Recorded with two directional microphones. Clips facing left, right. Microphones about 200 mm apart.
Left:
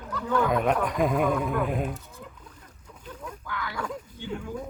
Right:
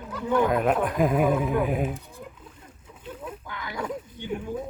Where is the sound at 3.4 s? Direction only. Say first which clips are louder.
Left 1 dB; 20° right (ahead or behind).